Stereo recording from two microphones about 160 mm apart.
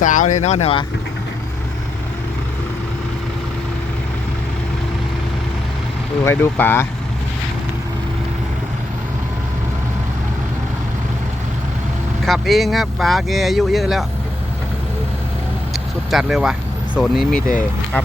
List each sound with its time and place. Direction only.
0.0 s speech: 50° left (ahead or behind)
6.2 s speech: 15° left (ahead or behind)
12.2 s speech: centre (ahead or behind)
16.0 s speech: centre (ahead or behind)